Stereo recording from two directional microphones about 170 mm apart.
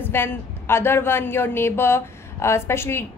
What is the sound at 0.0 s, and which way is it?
A woman's voice, 10° left (ahead or behind).